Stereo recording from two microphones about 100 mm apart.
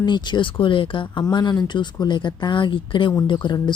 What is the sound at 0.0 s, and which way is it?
Speech, 50° left (ahead or behind).